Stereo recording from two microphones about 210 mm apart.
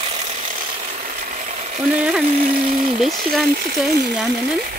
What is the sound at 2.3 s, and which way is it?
Speech, 40° right (ahead or behind).